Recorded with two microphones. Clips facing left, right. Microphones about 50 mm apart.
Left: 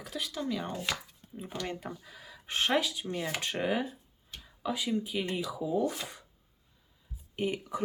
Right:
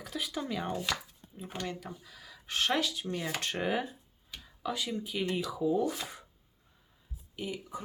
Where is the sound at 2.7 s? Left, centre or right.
Centre.